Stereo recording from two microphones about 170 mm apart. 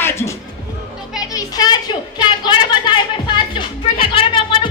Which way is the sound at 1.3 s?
20° left (ahead or behind).